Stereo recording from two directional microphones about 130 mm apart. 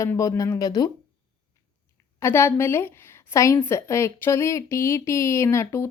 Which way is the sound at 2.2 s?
20° left (ahead or behind).